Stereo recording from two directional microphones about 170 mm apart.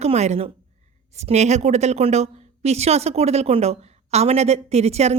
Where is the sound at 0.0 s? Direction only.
40° right (ahead or behind).